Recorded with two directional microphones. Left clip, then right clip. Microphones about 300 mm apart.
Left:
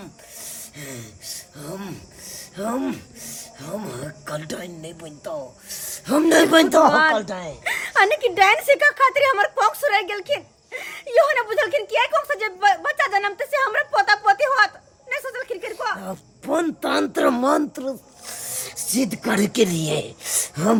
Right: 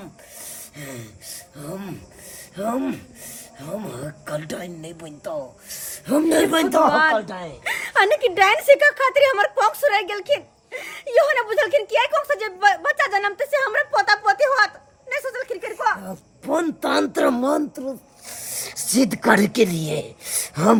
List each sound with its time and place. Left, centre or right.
0.0 s speech: centre
6.5 s speech: left
7.6 s speech: centre
18.5 s speech: centre